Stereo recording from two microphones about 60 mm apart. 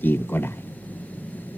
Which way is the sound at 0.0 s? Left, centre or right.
Left.